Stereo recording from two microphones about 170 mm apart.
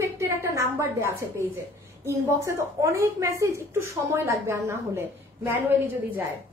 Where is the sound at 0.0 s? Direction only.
15° right (ahead or behind).